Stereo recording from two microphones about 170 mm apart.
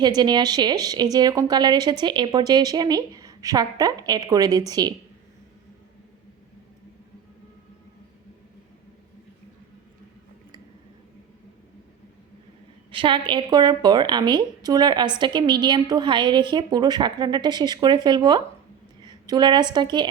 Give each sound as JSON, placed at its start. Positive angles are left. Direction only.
{"t": 0.2, "sound": "a woman's voice", "side_deg": -25}
{"t": 12.9, "sound": "a woman's voice", "side_deg": -30}